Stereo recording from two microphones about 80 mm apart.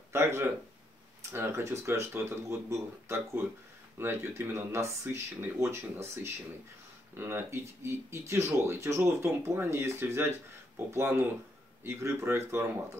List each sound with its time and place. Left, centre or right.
0.1 s speech: right